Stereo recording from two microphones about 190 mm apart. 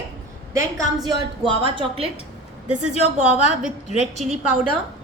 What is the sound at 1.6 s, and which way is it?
Speech, 30° right (ahead or behind).